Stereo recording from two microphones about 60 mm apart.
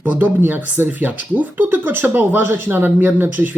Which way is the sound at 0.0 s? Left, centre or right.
Right.